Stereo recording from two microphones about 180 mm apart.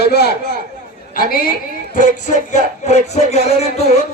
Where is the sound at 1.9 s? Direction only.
45° left (ahead or behind).